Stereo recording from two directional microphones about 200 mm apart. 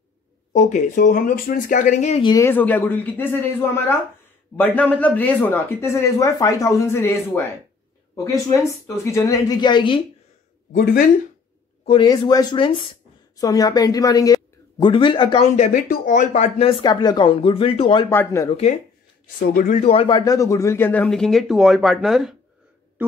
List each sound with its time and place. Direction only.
0.6 s speech: 35° left (ahead or behind)
2.3 s speech: 10° left (ahead or behind)
10.7 s speech: 45° left (ahead or behind)
11.8 s a woman's voice: 25° left (ahead or behind)
18.1 s speech: 10° left (ahead or behind)
19.5 s speech: 40° left (ahead or behind)
19.9 s speech: 25° left (ahead or behind); by 23.1 s 10° right (ahead or behind)